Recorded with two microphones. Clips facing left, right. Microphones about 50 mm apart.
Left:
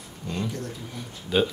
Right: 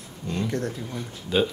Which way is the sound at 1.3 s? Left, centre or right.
Centre.